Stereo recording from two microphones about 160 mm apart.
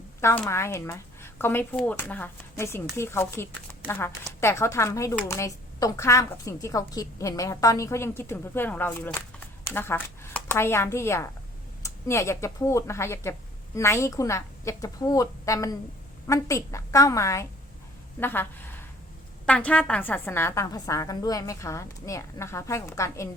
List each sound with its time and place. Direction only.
0.2 s a woman's voice: 15° left (ahead or behind)